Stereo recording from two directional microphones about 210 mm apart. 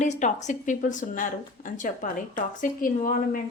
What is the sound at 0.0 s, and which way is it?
A woman's voice, 35° left (ahead or behind).